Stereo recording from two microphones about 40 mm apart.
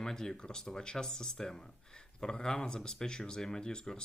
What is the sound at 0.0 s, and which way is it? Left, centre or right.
Speech, centre.